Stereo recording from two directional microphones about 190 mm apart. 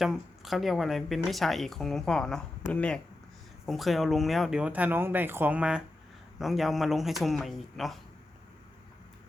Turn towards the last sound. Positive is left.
turn(degrees=0)  # may be behind; listen again after turning